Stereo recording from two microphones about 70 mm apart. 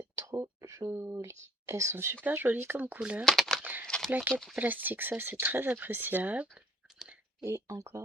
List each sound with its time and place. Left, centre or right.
0.2 s a sound: right
0.8 s speech: right
2.2 s speech: right
3.0 s speech: centre
3.2 s speech: centre
3.6 s speech: right
3.8 s a sound: centre
4.1 s speech: right
7.4 s speech: right